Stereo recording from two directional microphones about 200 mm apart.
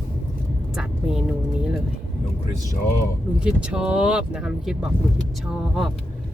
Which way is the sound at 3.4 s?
5° right (ahead or behind).